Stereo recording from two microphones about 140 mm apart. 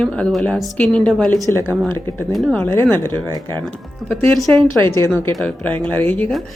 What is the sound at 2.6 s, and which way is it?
Speech, 15° left (ahead or behind).